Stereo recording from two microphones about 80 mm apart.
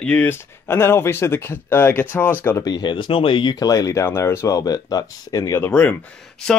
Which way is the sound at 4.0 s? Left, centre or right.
Left.